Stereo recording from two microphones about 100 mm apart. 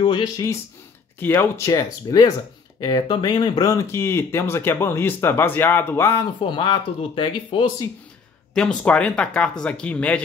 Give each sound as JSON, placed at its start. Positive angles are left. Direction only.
{"t": 1.2, "sound": "speech", "side_deg": 25}
{"t": 1.7, "sound": "speech", "side_deg": 40}
{"t": 3.6, "sound": "speech", "side_deg": 30}
{"t": 6.2, "sound": "speech", "side_deg": 50}
{"t": 8.5, "sound": "speech", "side_deg": 10}